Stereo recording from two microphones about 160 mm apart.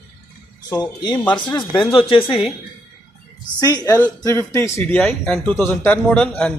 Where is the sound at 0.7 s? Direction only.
25° left (ahead or behind).